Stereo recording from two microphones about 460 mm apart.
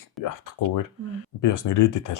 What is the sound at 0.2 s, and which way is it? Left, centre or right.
Speech, left.